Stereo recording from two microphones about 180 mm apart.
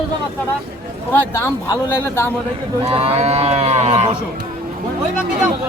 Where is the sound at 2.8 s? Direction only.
35° right (ahead or behind).